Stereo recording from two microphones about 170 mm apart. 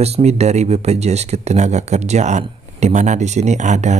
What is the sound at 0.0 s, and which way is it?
Speech, 40° right (ahead or behind).